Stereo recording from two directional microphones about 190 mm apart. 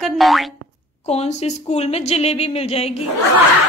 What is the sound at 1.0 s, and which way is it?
Speech, 35° left (ahead or behind).